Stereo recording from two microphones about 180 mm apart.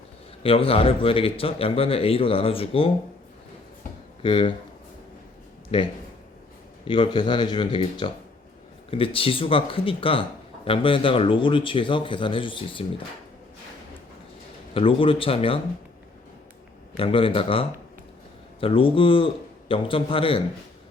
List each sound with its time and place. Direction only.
0.4 s speech: 30° left (ahead or behind)
4.2 s speech: 30° left (ahead or behind)
5.7 s a man's voice: 30° left (ahead or behind)
14.7 s speech: 30° left (ahead or behind)
17.0 s a man's voice: 30° left (ahead or behind)